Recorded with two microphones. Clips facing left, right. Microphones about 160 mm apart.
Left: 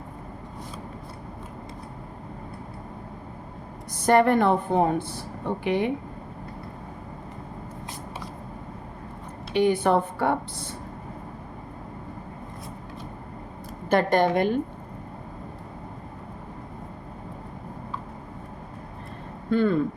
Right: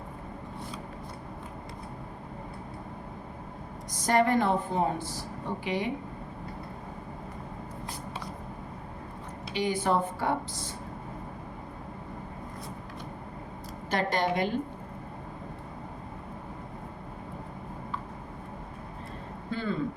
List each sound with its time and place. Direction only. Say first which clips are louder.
3.9 s a woman's voice: left 5 dB; 60° left (ahead or behind)
9.5 s a woman's voice: left 7 dB; 60° left (ahead or behind)
13.9 s a woman's voice: left 7 dB; 55° left (ahead or behind)
19.5 s speech: left 11 dB; 60° left (ahead or behind)